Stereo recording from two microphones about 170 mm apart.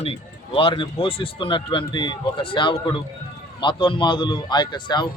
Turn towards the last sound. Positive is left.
turn(degrees=25)  # may be behind; listen again after turning